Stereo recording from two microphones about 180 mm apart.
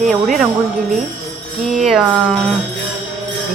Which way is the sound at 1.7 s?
Centre (ahead or behind).